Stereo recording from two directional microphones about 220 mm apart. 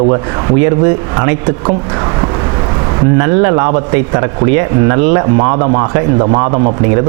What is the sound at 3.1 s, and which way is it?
A man's voice, 20° right (ahead or behind).